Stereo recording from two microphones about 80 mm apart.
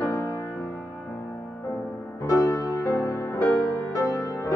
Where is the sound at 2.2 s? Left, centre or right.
Left.